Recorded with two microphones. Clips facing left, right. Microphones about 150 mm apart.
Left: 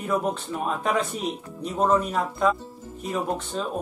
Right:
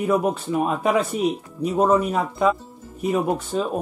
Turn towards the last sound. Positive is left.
turn(degrees=-5)  # may be behind; listen again after turning